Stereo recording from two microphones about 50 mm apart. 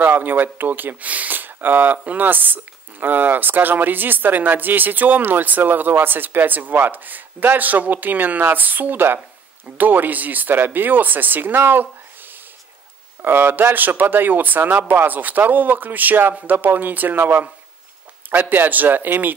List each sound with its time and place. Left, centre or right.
0.0 s speech: right